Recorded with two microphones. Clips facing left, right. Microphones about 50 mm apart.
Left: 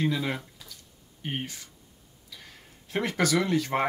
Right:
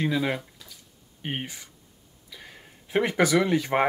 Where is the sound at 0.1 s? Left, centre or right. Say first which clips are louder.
Right 4 dB; centre.